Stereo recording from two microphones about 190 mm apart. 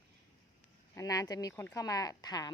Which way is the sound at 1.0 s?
20° left (ahead or behind).